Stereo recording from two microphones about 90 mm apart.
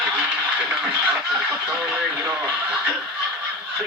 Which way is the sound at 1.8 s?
10° right (ahead or behind).